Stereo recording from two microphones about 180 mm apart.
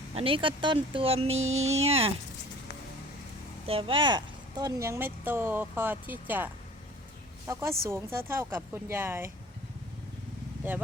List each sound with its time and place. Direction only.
0.1 s speech: 30° right (ahead or behind)
1.3 s music: 90° right
1.6 s speech: 35° right (ahead or behind)
3.7 s a woman's voice: 30° right (ahead or behind); by 9.3 s 10° right (ahead or behind)